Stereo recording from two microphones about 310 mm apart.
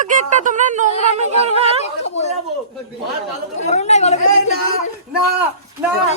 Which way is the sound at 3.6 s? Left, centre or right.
Left.